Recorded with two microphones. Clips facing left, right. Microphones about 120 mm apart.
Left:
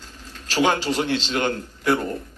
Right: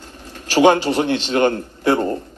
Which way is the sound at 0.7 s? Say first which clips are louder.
Right 9 dB; 55° right (ahead or behind).